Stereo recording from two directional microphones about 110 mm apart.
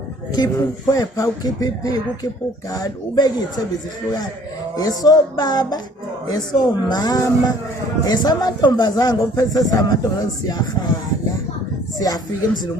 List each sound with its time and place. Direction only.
0.3 s a man's voice: 35° left (ahead or behind)
4.8 s a man's voice: 35° left (ahead or behind)
11.9 s speech: 35° left (ahead or behind)